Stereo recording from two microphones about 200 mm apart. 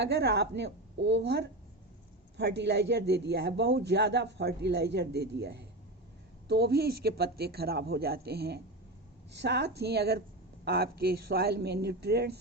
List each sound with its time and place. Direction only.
0.0 s speech: 55° right (ahead or behind)